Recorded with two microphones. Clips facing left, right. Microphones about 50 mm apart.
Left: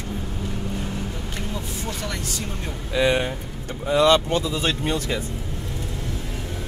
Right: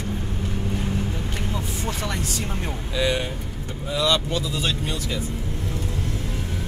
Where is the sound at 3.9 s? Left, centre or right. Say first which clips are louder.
Left 5 dB; left.